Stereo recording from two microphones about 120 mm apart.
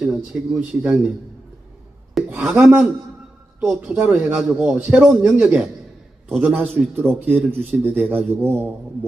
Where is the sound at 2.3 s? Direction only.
10° right (ahead or behind).